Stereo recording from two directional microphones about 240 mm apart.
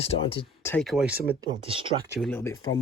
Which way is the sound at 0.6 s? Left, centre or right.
Centre.